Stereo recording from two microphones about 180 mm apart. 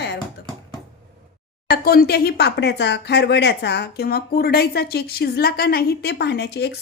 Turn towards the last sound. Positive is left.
turn(degrees=65)  # may be behind; listen again after turning